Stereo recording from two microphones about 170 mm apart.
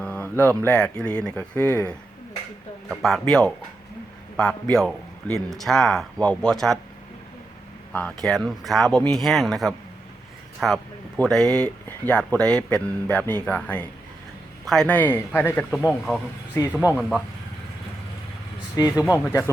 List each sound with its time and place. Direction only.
0.0 s a man's voice: 10° left (ahead or behind)
7.9 s a man's voice: 5° left (ahead or behind)
18.8 s speech: 20° left (ahead or behind)